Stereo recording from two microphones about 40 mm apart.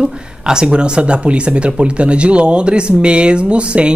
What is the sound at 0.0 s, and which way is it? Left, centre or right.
Speech, centre.